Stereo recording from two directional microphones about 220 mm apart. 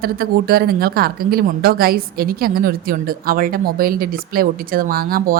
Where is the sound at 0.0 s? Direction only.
45° right (ahead or behind).